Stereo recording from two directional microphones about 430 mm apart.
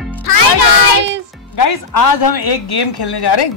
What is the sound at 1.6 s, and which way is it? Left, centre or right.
Speech, left.